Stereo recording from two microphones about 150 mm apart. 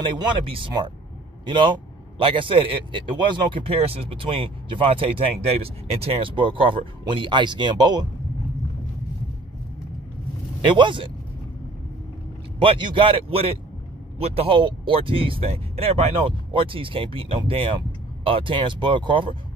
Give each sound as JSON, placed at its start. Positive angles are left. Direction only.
{"t": 0.0, "sound": "a man's voice", "side_deg": -30}
{"t": 10.6, "sound": "a man's voice", "side_deg": -30}
{"t": 12.6, "sound": "a man's voice", "side_deg": -30}